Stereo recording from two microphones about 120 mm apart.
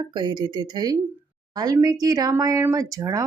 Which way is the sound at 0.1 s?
35° right (ahead or behind).